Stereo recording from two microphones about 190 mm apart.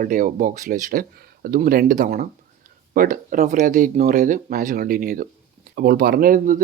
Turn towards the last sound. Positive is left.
turn(degrees=-45)  # may be behind; listen again after turning